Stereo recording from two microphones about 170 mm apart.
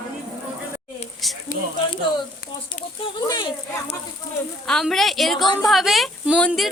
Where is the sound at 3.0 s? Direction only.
25° left (ahead or behind).